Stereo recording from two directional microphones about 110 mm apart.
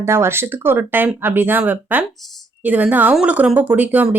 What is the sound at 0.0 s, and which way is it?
A woman's voice, 25° right (ahead or behind).